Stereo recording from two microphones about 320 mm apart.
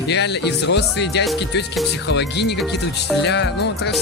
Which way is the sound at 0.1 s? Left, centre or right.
Left.